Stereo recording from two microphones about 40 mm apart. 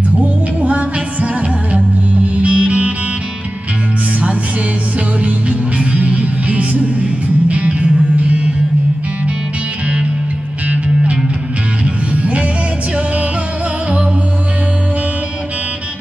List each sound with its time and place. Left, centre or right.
0.2 s music: right
5.2 s music: right
11.8 s music: right